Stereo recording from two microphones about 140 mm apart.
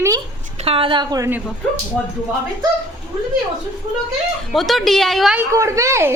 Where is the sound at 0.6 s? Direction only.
40° right (ahead or behind).